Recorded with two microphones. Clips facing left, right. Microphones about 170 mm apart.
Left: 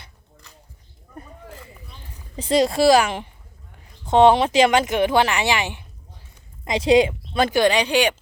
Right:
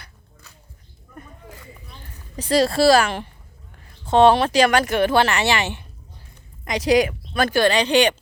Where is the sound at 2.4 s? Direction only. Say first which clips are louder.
Even; 20° left (ahead or behind).